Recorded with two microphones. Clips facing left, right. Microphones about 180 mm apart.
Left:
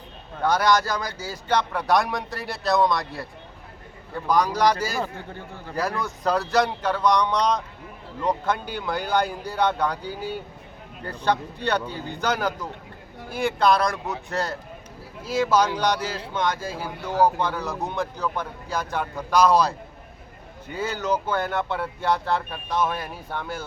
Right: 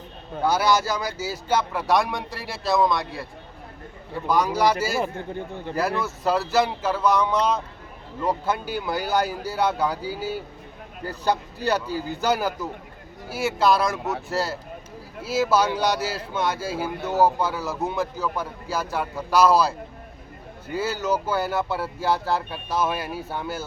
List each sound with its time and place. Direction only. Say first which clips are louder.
0.4 s speech: even; 5° right (ahead or behind)
5.0 s speech: right 6 dB; 20° right (ahead or behind)
5.7 s a man's voice: right 2 dB; 5° right (ahead or behind)
20.7 s speech: right 1 dB; 5° right (ahead or behind)